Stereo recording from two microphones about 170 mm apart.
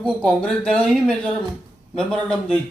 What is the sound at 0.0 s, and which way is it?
Speech, 5° left (ahead or behind).